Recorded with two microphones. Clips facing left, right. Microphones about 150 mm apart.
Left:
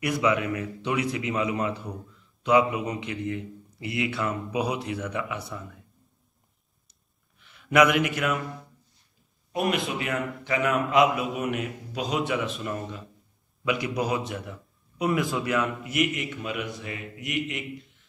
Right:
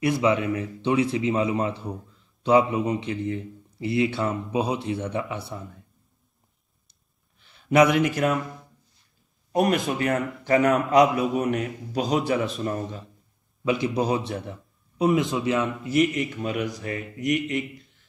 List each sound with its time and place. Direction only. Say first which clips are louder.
0.0 s speech: right 3 dB; 30° right (ahead or behind)
7.3 s a man's voice: right 2 dB; 35° right (ahead or behind)
9.5 s a man's voice: right 4 dB; 40° right (ahead or behind)